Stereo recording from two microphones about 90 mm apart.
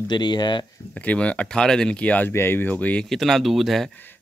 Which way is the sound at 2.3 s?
25° left (ahead or behind).